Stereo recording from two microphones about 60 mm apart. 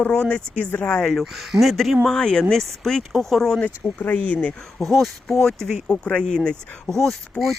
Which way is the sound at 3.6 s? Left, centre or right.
Left.